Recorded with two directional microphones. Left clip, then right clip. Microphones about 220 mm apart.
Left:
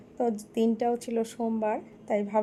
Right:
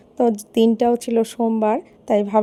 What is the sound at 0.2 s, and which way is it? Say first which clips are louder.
Speech: right 10 dB; 40° right (ahead or behind).